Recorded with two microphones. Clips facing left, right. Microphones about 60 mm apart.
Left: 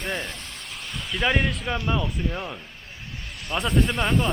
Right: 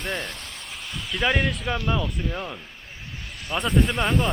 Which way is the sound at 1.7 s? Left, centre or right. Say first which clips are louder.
Even; centre.